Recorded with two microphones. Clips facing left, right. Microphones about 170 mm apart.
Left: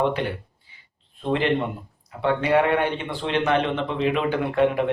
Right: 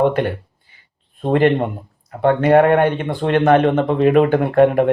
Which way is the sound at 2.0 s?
50° right (ahead or behind).